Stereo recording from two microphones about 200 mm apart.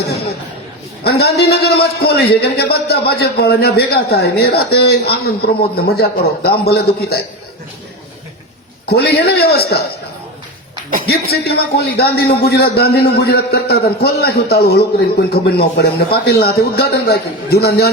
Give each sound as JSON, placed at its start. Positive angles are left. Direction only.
{"t": 1.0, "sound": "a man's voice", "side_deg": 55}
{"t": 8.9, "sound": "a man's voice", "side_deg": 55}
{"t": 11.0, "sound": "a man's voice", "side_deg": 50}